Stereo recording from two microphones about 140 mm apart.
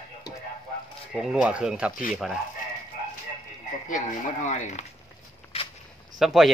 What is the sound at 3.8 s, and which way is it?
Speech, 65° left (ahead or behind).